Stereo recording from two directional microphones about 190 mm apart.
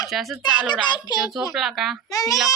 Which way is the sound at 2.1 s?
20° left (ahead or behind).